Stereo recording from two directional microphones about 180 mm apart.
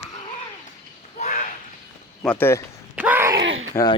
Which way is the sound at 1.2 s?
45° left (ahead or behind).